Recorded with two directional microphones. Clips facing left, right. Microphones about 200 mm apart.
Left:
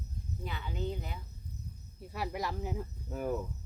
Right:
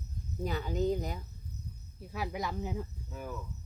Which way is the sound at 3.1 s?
45° left (ahead or behind).